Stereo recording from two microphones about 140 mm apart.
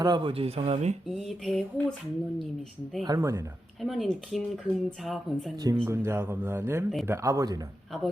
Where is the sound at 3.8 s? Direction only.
Centre (ahead or behind).